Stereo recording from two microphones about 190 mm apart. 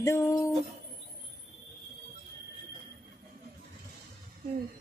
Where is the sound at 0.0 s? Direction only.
15° left (ahead or behind).